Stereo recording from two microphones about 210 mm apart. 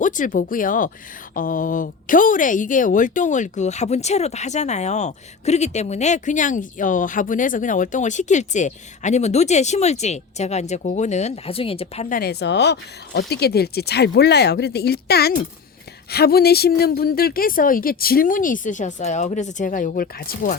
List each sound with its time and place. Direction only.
0.0 s a woman's voice: 40° left (ahead or behind)
12.0 s speech: 45° left (ahead or behind)